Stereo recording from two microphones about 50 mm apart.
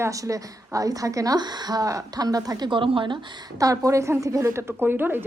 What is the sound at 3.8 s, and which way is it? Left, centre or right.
Speech, right.